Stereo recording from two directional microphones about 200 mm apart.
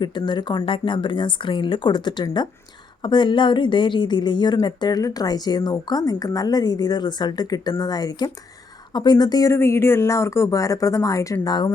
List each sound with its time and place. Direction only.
0.0 s a woman's voice: 25° left (ahead or behind)